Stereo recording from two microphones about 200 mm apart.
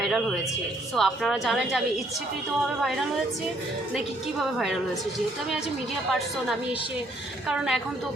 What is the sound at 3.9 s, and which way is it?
Speech, centre (ahead or behind).